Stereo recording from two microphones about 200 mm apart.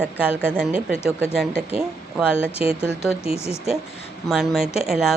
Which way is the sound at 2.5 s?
30° left (ahead or behind).